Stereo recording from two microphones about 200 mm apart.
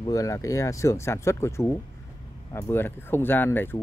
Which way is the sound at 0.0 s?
15° left (ahead or behind).